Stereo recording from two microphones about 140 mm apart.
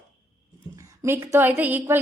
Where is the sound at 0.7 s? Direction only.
20° right (ahead or behind).